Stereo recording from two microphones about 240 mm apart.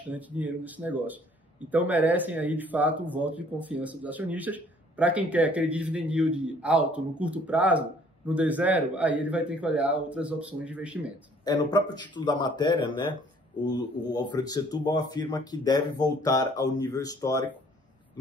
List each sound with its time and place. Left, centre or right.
0.1 s a man's voice: centre
11.4 s speech: centre
14.1 s speech: centre